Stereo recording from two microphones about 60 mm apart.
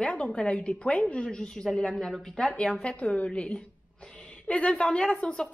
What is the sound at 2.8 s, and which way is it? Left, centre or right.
A woman's voice, left.